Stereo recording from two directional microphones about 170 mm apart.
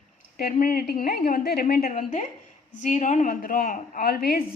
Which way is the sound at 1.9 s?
45° left (ahead or behind).